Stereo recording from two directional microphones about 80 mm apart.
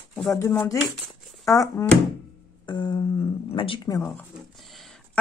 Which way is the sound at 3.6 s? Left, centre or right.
Left.